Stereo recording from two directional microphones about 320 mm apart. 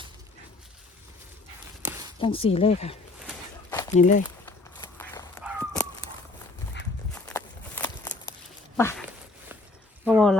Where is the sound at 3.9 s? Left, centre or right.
Left.